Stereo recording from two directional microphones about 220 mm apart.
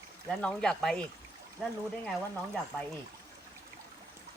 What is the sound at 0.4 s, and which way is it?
Speech, 5° left (ahead or behind).